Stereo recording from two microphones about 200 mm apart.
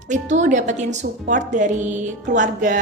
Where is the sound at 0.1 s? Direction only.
35° right (ahead or behind).